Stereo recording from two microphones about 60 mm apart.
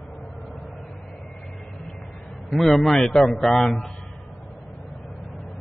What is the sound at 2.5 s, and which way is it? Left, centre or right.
A man's voice, centre.